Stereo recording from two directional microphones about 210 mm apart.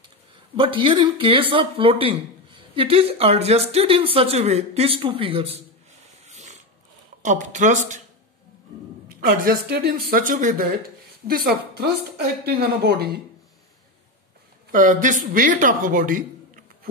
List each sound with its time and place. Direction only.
0.6 s speech: 25° right (ahead or behind)
6.2 s a sound: 35° right (ahead or behind)
7.2 s speech: 35° right (ahead or behind)
9.2 s speech: 45° right (ahead or behind)
14.7 s a man's voice: 40° right (ahead or behind)